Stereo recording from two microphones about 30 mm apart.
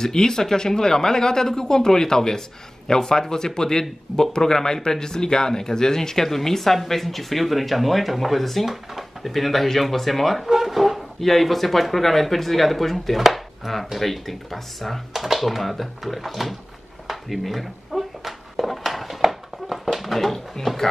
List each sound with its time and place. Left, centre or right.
0.0 s speech: centre
8.6 s speech: centre
10.4 s speech: centre
17.1 s a sound: centre
20.6 s speech: centre